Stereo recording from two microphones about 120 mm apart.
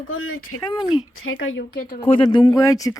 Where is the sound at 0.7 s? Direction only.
40° left (ahead or behind).